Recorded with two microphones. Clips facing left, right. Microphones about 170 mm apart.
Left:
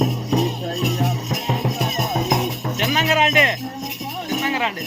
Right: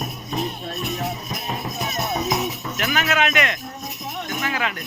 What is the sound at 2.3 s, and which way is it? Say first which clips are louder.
Music: left 3 dB; 55° left (ahead or behind).